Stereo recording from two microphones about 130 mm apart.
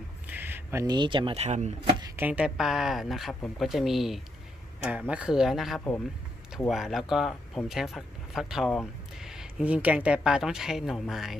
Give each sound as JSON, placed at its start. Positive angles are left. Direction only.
{"t": 0.3, "sound": "a sound", "side_deg": -15}
{"t": 0.8, "sound": "speech", "side_deg": -35}
{"t": 2.1, "sound": "speech", "side_deg": -10}